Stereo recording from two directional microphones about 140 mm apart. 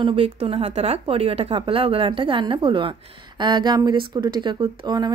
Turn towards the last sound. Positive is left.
turn(degrees=-30)  # may be behind; listen again after turning